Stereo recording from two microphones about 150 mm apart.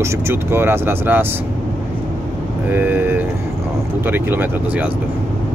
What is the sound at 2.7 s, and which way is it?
Speech, 15° right (ahead or behind).